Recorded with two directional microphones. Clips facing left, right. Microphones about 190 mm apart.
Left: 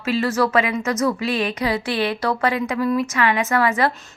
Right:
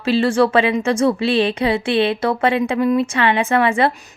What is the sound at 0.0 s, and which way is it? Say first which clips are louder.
A woman's voice: right 5 dB; 30° right (ahead or behind).